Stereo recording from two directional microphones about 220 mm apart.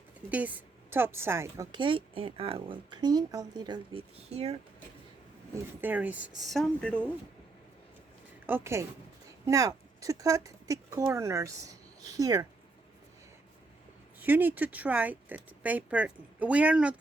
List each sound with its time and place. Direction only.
0.3 s a woman's voice: 5° right (ahead or behind); by 4.5 s 30° right (ahead or behind)
5.8 s speech: 10° right (ahead or behind)
8.4 s speech: 10° right (ahead or behind)
14.2 s speech: 10° right (ahead or behind)